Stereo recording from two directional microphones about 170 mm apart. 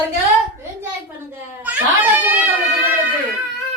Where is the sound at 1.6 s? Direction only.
10° right (ahead or behind).